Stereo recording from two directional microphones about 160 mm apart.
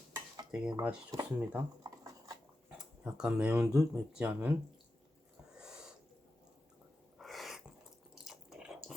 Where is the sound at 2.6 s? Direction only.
5° right (ahead or behind).